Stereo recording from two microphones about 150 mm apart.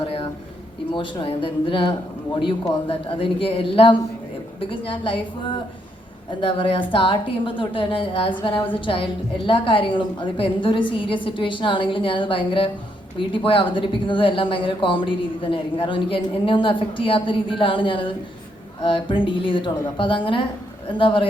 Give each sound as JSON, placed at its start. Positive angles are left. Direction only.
{"t": 0.9, "sound": "speech", "side_deg": 35}
{"t": 6.4, "sound": "speech", "side_deg": 35}
{"t": 8.5, "sound": "a woman's voice", "side_deg": 10}
{"t": 8.8, "sound": "speech", "side_deg": 35}